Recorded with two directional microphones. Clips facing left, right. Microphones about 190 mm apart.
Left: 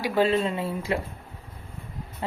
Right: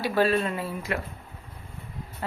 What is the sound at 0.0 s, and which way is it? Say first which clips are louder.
Speech: left 1 dB; 20° left (ahead or behind).